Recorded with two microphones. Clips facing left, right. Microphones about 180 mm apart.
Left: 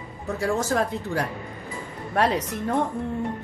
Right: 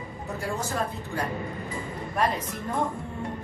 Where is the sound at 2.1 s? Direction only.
80° left.